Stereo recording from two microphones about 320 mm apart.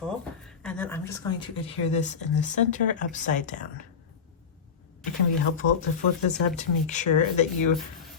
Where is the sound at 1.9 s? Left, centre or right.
Left.